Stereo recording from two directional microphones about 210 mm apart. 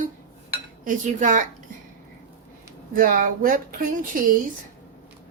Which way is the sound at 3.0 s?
40° right (ahead or behind).